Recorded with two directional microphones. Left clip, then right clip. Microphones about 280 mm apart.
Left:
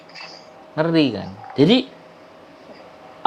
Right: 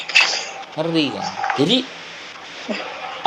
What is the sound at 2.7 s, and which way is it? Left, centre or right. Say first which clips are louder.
Speech: right 18 dB; right.